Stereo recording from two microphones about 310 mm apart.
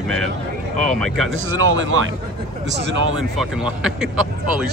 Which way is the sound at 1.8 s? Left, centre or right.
Right.